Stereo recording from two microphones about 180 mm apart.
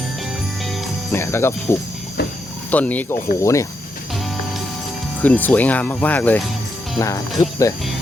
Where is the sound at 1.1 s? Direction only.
15° left (ahead or behind).